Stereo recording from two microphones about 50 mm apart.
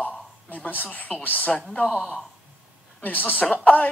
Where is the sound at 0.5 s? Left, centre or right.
Left.